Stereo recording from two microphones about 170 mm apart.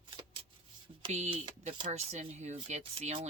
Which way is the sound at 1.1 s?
40° right (ahead or behind).